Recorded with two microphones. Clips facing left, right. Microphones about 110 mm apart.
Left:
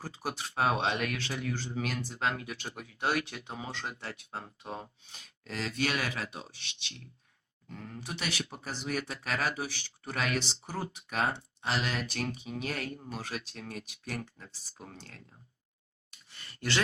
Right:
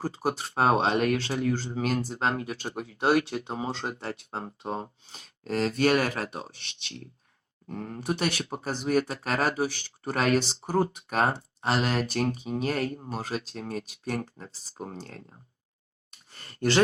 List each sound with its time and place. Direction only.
0.0 s speech: 35° right (ahead or behind)
16.1 s sigh: 40° right (ahead or behind)